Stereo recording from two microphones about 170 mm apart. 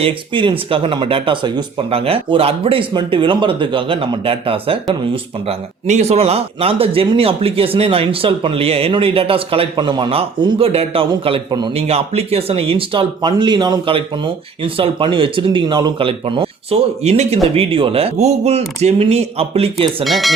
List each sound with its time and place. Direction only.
0.0 s speech: 30° right (ahead or behind)
20.1 s speech: centre (ahead or behind)